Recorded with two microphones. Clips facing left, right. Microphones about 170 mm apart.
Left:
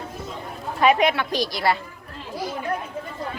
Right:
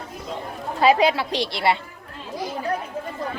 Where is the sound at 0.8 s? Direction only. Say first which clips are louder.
Right 1 dB; 30° right (ahead or behind).